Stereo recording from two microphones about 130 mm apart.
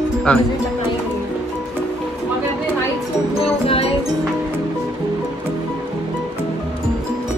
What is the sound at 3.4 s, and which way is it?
Music, 50° left (ahead or behind).